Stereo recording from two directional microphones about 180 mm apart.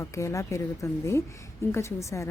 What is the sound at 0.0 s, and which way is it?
Speech, 15° left (ahead or behind).